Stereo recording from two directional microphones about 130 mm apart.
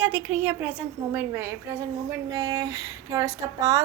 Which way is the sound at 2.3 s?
25° right (ahead or behind).